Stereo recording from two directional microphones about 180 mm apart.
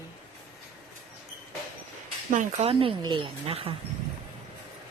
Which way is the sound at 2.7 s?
25° right (ahead or behind).